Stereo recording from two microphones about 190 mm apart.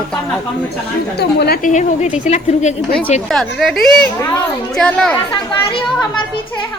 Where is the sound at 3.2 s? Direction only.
Centre (ahead or behind).